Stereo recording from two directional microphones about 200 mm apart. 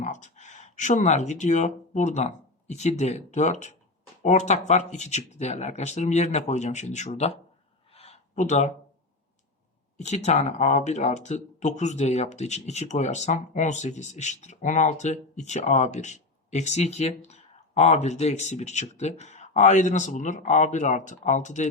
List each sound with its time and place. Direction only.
0.0 s speech: 35° left (ahead or behind)
7.9 s a sound: 30° left (ahead or behind)
10.0 s speech: 35° left (ahead or behind)